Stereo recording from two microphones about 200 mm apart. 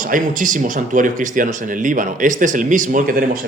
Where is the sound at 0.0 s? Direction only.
40° right (ahead or behind).